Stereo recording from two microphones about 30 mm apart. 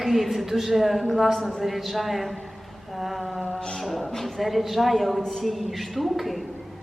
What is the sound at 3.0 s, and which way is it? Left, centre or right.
Mantra, centre.